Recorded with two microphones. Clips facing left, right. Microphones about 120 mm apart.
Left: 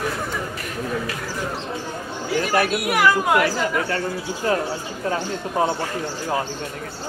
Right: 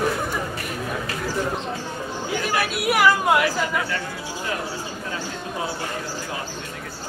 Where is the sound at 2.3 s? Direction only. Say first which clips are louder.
Left 5 dB; 45° left (ahead or behind).